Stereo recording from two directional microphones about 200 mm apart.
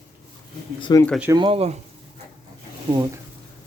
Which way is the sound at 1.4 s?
25° right (ahead or behind).